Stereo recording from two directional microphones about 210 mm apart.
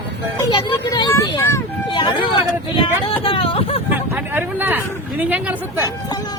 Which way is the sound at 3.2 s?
25° left (ahead or behind).